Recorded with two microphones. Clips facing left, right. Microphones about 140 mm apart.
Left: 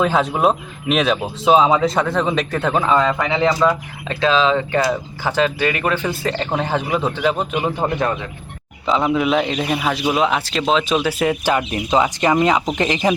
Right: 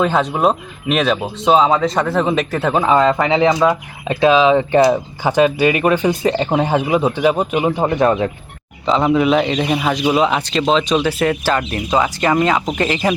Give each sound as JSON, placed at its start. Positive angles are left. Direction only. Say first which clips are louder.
{"t": 0.0, "sound": "speech", "louder": "right 1 dB", "side_deg": 0}
{"t": 2.8, "sound": "speech", "louder": "right 3 dB", "side_deg": -25}
{"t": 9.1, "sound": "speech", "louder": "right 3 dB", "side_deg": 0}